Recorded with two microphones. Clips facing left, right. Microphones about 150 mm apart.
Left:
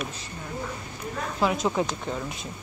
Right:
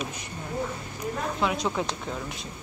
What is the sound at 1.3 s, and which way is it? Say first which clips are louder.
Speech: left 5 dB; centre (ahead or behind).